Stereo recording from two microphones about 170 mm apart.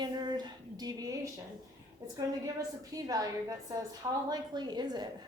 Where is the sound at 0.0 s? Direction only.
25° right (ahead or behind).